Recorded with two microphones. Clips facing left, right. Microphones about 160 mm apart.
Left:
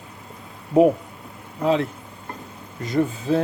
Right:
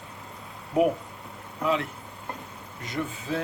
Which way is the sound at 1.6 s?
30° left (ahead or behind).